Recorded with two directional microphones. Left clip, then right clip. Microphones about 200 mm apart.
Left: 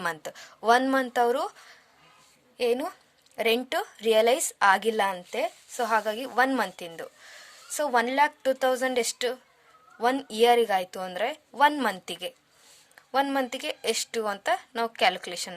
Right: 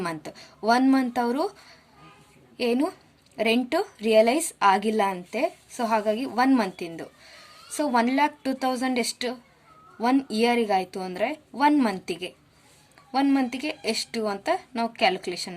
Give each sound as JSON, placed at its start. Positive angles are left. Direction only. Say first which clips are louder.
{"t": 0.0, "sound": "a woman's voice", "louder": "even", "side_deg": 40}